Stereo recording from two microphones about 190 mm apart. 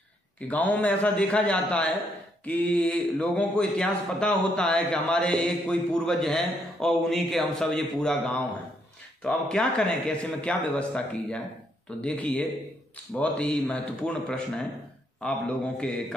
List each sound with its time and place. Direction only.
0.5 s a man's voice: 10° left (ahead or behind)